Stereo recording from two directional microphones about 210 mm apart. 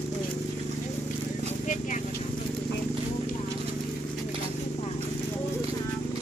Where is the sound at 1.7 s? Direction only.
35° left (ahead or behind).